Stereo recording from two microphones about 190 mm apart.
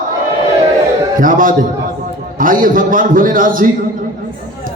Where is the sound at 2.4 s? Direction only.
45° right (ahead or behind).